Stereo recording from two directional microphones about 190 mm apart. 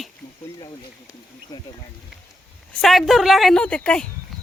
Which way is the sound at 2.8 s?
Centre (ahead or behind).